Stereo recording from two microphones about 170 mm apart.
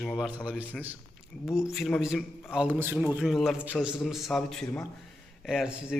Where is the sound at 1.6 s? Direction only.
5° right (ahead or behind).